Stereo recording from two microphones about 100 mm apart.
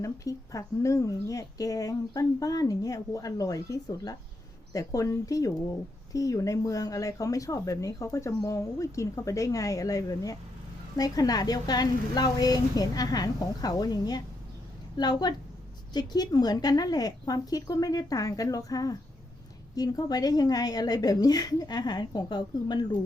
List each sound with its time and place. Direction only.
0.0 s a woman's voice: 35° left (ahead or behind)